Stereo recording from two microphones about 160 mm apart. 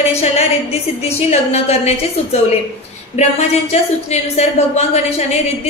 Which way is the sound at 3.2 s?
45° left (ahead or behind).